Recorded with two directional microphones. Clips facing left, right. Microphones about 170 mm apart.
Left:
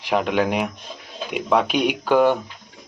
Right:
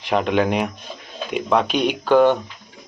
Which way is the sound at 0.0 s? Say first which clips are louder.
Right 1 dB; 5° left (ahead or behind).